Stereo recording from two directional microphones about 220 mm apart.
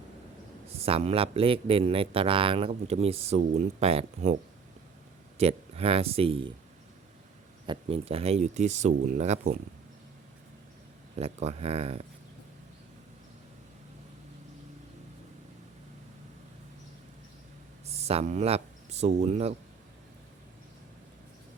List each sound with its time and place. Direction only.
0.7 s speech: 25° right (ahead or behind)
5.4 s speech: 25° right (ahead or behind)
7.7 s speech: 25° right (ahead or behind)
11.2 s speech: 30° right (ahead or behind)
17.8 s speech: 30° right (ahead or behind)